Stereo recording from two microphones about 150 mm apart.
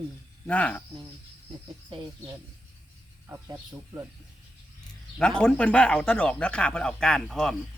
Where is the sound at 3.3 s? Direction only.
15° right (ahead or behind).